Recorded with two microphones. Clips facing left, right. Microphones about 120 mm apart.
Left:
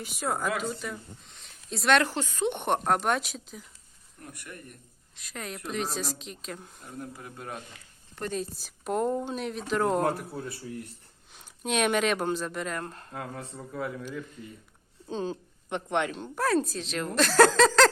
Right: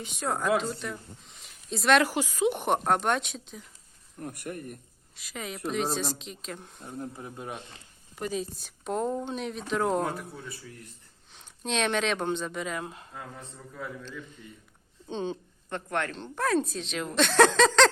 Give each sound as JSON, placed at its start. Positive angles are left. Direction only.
{"t": 0.0, "sound": "speech", "side_deg": 5}
{"t": 1.2, "sound": "a sound", "side_deg": 0}
{"t": 2.1, "sound": "speech", "side_deg": -5}
{"t": 4.2, "sound": "speech", "side_deg": -50}
{"t": 5.1, "sound": "speech", "side_deg": 0}
{"t": 6.8, "sound": "speech", "side_deg": -20}
{"t": 8.1, "sound": "speech", "side_deg": -5}
{"t": 10.0, "sound": "speech", "side_deg": 60}
{"t": 11.3, "sound": "speech", "side_deg": 5}
{"t": 13.1, "sound": "speech", "side_deg": 75}
{"t": 15.0, "sound": "speech", "side_deg": 0}
{"t": 15.7, "sound": "speech", "side_deg": 20}